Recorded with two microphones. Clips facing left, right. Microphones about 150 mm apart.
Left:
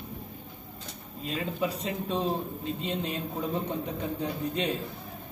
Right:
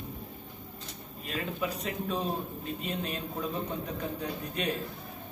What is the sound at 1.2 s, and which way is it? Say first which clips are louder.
A man's voice: left 3 dB; 25° left (ahead or behind).